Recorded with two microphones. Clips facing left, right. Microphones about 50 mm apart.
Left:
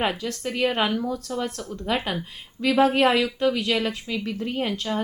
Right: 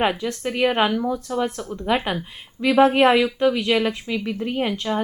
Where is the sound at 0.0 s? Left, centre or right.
Centre.